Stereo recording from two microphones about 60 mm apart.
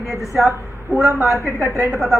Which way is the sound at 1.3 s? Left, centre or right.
Left.